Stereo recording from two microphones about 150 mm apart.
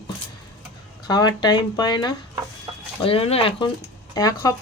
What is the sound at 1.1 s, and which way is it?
Speech, 30° left (ahead or behind).